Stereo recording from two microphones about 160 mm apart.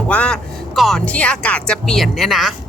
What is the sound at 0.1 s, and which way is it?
Speech, 5° left (ahead or behind).